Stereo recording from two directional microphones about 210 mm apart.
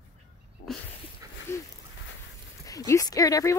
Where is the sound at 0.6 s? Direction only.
45° left (ahead or behind).